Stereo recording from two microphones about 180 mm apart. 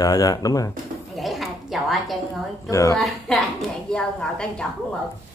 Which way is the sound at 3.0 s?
Centre (ahead or behind).